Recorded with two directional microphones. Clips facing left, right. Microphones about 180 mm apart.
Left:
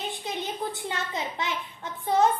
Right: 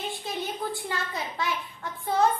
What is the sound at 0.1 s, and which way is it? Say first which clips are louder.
A child's voice: even; 20° left (ahead or behind).